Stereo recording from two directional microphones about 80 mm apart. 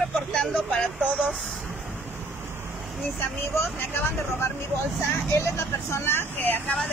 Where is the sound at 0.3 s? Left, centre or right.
Centre.